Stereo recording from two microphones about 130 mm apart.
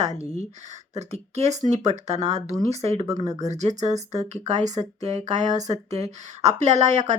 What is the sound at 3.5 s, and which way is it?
Speech, 60° right (ahead or behind).